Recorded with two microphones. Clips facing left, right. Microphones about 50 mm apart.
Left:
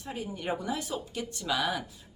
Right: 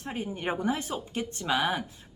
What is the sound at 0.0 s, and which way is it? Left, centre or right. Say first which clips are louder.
Speech: right 3 dB; right.